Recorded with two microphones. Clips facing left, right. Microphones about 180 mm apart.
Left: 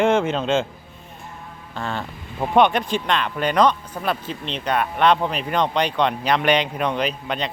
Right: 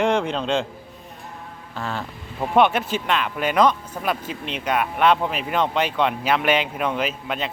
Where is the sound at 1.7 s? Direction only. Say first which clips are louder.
Left 1 dB; centre (ahead or behind).